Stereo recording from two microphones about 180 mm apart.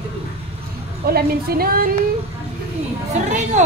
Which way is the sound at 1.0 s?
55° right (ahead or behind).